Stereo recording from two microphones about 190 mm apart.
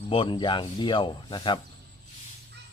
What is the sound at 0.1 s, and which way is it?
Speech, 25° left (ahead or behind).